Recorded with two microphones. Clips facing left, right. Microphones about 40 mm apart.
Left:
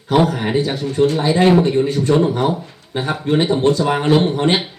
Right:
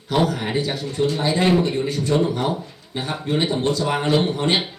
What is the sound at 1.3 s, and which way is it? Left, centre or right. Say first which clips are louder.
A man's voice: left 4 dB; left.